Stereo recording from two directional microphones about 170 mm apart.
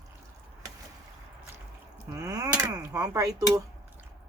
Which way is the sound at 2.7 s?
15° right (ahead or behind).